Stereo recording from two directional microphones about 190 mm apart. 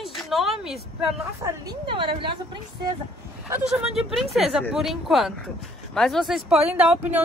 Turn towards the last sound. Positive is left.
turn(degrees=-5)  # may be behind; listen again after turning